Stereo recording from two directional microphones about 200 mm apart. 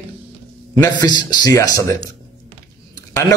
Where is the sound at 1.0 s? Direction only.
20° left (ahead or behind).